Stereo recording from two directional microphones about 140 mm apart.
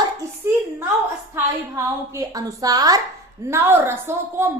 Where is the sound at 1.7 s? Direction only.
25° right (ahead or behind).